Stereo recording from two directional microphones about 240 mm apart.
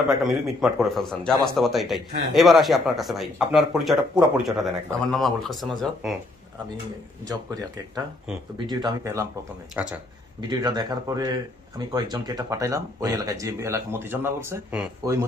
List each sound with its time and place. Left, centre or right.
0.1 s a man's voice: centre
8.6 s speech: centre
10.5 s speech: centre